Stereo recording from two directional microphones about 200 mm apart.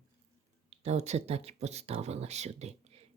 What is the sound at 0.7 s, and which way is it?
Speech, 30° right (ahead or behind).